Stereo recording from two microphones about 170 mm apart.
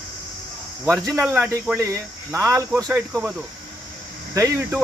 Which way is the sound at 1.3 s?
10° right (ahead or behind).